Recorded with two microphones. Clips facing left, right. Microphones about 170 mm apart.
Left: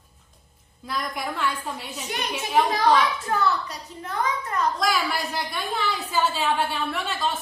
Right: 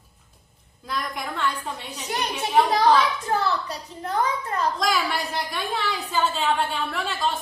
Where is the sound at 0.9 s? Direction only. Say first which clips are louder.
Left 1 dB; centre (ahead or behind).